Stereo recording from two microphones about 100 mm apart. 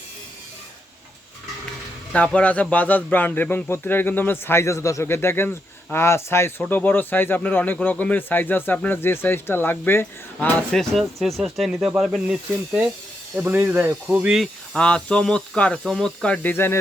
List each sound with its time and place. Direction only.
2.1 s speech: 15° left (ahead or behind)
10.7 s speech: 5° left (ahead or behind)
13.4 s speech: 20° right (ahead or behind)
14.3 s speech: 5° left (ahead or behind); by 16.7 s 20° left (ahead or behind)